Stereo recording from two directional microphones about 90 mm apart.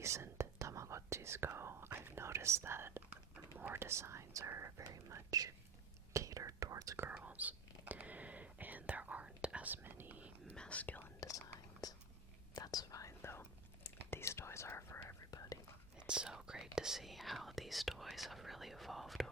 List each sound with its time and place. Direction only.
0.0 s whispering: 30° right (ahead or behind)
7.1 s whispering: 15° right (ahead or behind)
10.5 s whispering: 10° left (ahead or behind)
11.2 s whispering: 40° left (ahead or behind)
15.3 s whispering: 45° left (ahead or behind)
16.0 s whispering: 10° right (ahead or behind)